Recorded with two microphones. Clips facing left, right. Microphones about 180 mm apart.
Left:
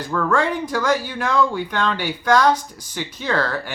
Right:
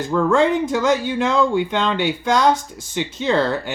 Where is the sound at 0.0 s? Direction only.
25° right (ahead or behind).